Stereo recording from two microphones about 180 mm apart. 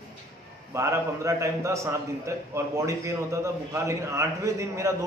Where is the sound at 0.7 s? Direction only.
15° right (ahead or behind).